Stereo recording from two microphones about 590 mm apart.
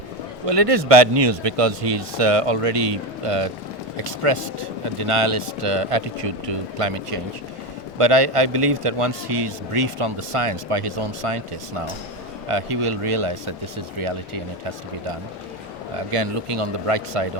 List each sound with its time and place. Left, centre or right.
0.4 s a man's voice: right
16.1 s a man's voice: right